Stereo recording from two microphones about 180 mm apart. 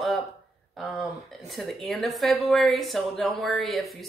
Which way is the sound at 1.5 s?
Centre (ahead or behind).